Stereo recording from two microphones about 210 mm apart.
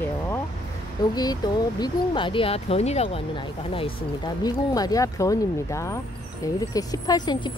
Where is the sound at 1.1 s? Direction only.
20° left (ahead or behind).